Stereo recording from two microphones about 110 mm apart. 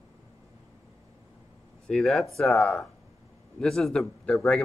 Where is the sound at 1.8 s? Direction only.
5° left (ahead or behind).